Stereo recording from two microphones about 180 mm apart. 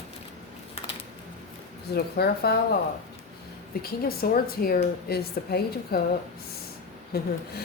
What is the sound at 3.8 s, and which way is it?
Speech, 55° left (ahead or behind).